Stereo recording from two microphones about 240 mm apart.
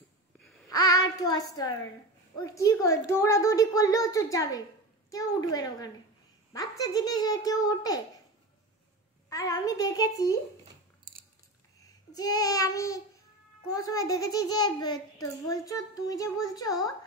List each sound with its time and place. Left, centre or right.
0.7 s child singing: centre
2.3 s a woman's voice: centre
9.3 s a woman's voice: centre
11.8 s a sound: centre
12.4 s a woman's voice: centre